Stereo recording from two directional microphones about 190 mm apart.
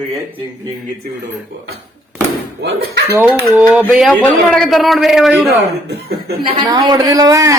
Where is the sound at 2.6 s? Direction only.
65° right (ahead or behind).